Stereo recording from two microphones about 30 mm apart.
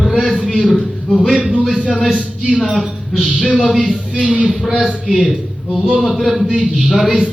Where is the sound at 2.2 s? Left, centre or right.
Right.